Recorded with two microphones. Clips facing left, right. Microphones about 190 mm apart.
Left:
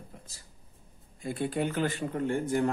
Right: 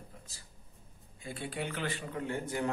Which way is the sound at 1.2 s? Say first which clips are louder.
Left 8 dB; 40° left (ahead or behind).